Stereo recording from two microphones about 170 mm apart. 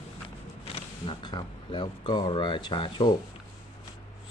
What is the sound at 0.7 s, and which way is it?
Speech, 25° left (ahead or behind).